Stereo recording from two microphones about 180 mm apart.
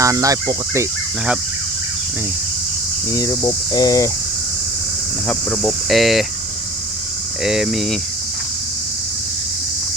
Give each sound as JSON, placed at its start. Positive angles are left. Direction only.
{"t": 0.0, "sound": "speech", "side_deg": -20}
{"t": 3.1, "sound": "speech", "side_deg": 20}
{"t": 5.3, "sound": "speech", "side_deg": 5}
{"t": 7.4, "sound": "speech", "side_deg": -5}